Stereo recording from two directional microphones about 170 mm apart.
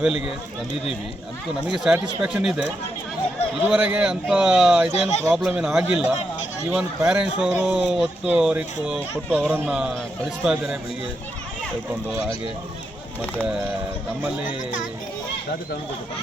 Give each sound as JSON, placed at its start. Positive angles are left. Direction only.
{"t": 1.6, "sound": "speech", "side_deg": -5}
{"t": 3.7, "sound": "speech", "side_deg": -10}
{"t": 4.9, "sound": "speech", "side_deg": 40}
{"t": 5.4, "sound": "speech", "side_deg": -5}